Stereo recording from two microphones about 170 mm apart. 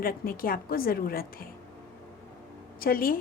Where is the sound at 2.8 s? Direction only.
60° left (ahead or behind).